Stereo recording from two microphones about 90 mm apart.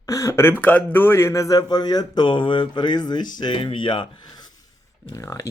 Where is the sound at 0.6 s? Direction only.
15° left (ahead or behind); by 4.2 s 60° left (ahead or behind).